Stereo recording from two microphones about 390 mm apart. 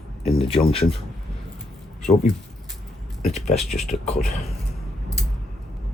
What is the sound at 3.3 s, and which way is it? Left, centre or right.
Speech, centre.